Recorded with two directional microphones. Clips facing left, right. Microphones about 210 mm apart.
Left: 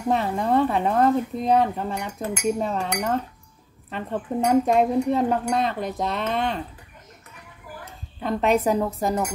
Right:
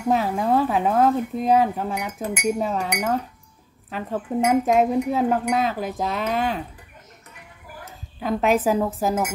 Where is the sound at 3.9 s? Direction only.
5° right (ahead or behind).